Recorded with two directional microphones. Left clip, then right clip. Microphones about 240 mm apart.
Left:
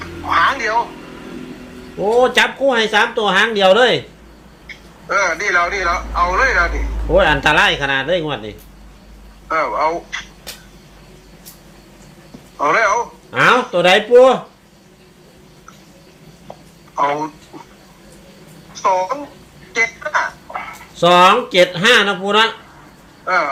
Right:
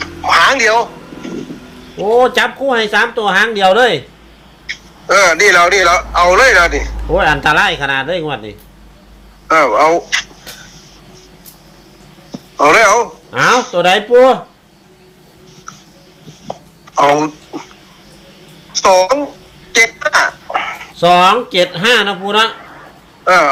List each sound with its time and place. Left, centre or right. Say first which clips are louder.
0.0 s music: right 5 dB; right
2.0 s speech: right 2 dB; centre
5.0 s a man's voice: right 9 dB; right
7.1 s speech: right 2 dB; centre
9.5 s a man's voice: right 8 dB; right
12.5 s a man's voice: right 7 dB; right
13.3 s speech: right 2 dB; centre
16.5 s a sound: right 11 dB; right
18.8 s a man's voice: right 7 dB; right
19.7 s a sound: right 7 dB; right
20.9 s speech: right 1 dB; centre
23.2 s speech: right 7 dB; right